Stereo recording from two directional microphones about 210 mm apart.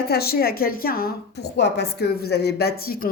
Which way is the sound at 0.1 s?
45° left (ahead or behind).